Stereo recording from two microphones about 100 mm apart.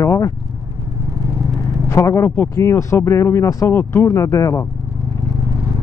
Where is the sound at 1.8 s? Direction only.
30° left (ahead or behind).